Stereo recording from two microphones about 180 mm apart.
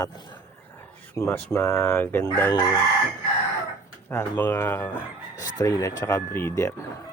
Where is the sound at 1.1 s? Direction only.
15° left (ahead or behind).